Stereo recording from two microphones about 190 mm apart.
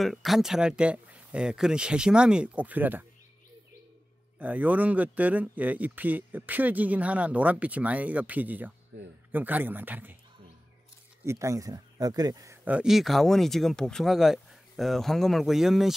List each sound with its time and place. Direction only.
0.0 s speech: centre (ahead or behind)
4.4 s speech: 10° right (ahead or behind)
11.2 s speech: 15° right (ahead or behind)
12.6 s speech: 5° right (ahead or behind)